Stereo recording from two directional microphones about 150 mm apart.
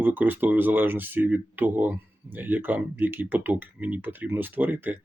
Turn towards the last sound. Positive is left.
turn(degrees=-15)  # may be behind; listen again after turning